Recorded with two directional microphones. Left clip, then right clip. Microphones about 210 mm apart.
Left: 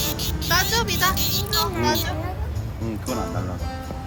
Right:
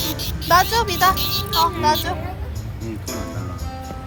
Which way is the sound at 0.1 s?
20° left (ahead or behind).